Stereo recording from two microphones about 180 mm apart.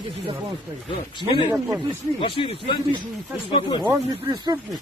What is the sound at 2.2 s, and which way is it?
Speech, 30° left (ahead or behind).